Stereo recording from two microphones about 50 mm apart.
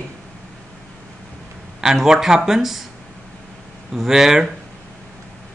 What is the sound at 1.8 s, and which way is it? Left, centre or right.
A man's voice, centre.